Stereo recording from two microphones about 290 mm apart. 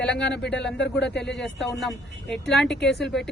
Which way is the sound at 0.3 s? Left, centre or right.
Left.